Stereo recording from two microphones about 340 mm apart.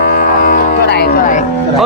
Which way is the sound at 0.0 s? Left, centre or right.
Left.